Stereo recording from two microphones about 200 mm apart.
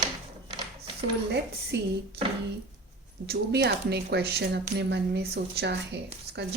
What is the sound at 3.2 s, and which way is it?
Speech, 55° right (ahead or behind).